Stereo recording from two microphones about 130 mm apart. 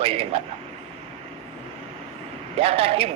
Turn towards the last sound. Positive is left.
turn(degrees=-45)  # may be behind; listen again after turning